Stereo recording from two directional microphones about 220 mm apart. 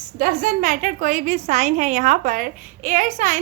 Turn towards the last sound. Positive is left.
turn(degrees=-35)  # may be behind; listen again after turning